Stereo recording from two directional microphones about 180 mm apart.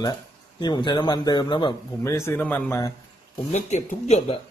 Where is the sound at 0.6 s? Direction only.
25° left (ahead or behind).